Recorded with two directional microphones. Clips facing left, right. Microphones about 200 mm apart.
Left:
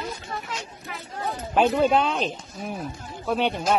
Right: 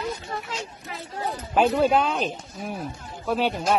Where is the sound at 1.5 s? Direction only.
5° right (ahead or behind).